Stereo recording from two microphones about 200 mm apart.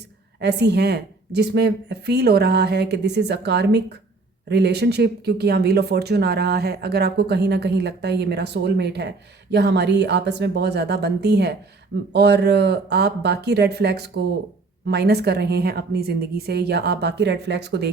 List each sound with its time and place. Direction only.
0.3 s speech: 55° right (ahead or behind)